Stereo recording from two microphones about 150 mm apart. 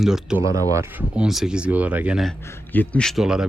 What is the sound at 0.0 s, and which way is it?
Speech, 5° right (ahead or behind).